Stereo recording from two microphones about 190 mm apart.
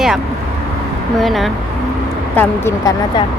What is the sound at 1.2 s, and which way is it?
Speech, centre (ahead or behind).